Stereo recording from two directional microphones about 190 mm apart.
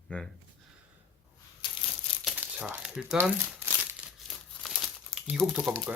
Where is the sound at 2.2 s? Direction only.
5° right (ahead or behind).